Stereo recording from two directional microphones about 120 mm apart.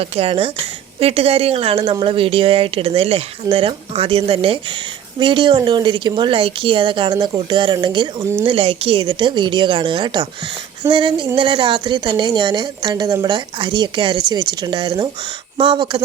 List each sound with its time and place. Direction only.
0.0 s speech: 55° right (ahead or behind); by 8.1 s 40° right (ahead or behind)
8.2 s speech: 20° right (ahead or behind)
8.4 s speech: 50° right (ahead or behind)